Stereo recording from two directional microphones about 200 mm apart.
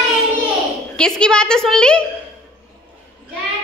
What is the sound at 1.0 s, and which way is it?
A woman's voice, 5° left (ahead or behind).